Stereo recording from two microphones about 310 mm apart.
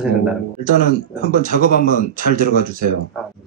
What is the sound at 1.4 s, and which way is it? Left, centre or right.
Speech, right.